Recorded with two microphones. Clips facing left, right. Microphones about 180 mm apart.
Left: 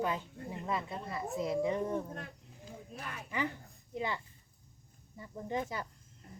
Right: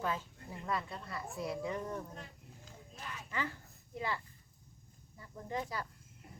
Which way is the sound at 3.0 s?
55° left (ahead or behind).